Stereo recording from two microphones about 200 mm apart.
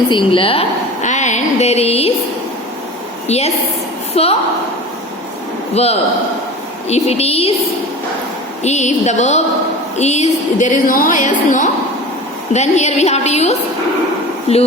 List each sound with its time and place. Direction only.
0.1 s a woman's voice: 25° left (ahead or behind)
3.2 s a woman's voice: 30° left (ahead or behind)
5.7 s a woman's voice: 30° left (ahead or behind)
8.6 s a woman's voice: 35° left (ahead or behind)